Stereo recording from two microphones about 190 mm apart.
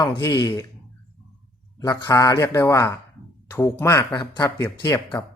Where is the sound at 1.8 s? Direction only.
20° left (ahead or behind).